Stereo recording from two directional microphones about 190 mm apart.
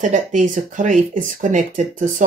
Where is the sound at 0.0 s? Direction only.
40° right (ahead or behind).